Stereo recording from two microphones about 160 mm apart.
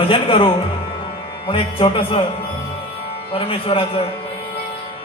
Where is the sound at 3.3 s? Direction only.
35° left (ahead or behind).